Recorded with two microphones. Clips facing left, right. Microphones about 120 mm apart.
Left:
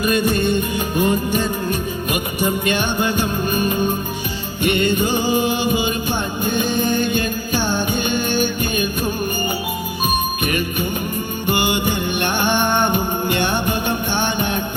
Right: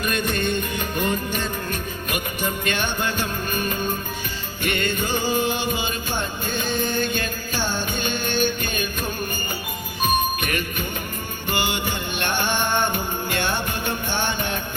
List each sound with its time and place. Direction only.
0.0 s music: 5° left (ahead or behind)
10.1 s music: 10° left (ahead or behind)